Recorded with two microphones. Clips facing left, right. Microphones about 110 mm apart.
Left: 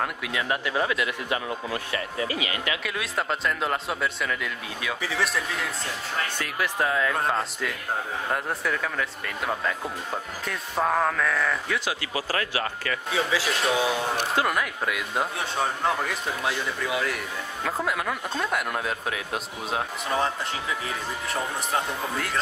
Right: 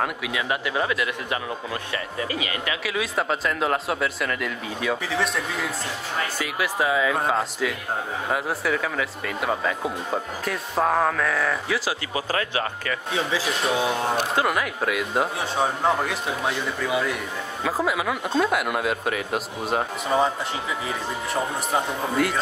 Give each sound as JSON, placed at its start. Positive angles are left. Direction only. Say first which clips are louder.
{"t": 0.0, "sound": "speech", "louder": "right 2 dB", "side_deg": -5}
{"t": 2.4, "sound": "speech", "louder": "right 1 dB", "side_deg": -30}
{"t": 2.8, "sound": "speech", "louder": "right 4 dB", "side_deg": 0}
{"t": 12.1, "sound": "speech", "louder": "right 2 dB", "side_deg": -25}
{"t": 13.1, "sound": "speech", "louder": "even", "side_deg": 0}